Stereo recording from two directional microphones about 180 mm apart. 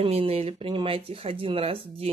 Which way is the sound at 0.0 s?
35° right (ahead or behind).